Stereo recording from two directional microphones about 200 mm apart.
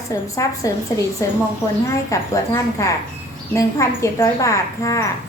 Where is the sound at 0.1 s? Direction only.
15° left (ahead or behind).